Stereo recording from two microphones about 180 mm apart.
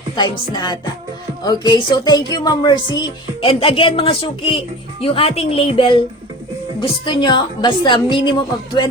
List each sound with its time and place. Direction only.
0.2 s a woman's voice: 25° left (ahead or behind)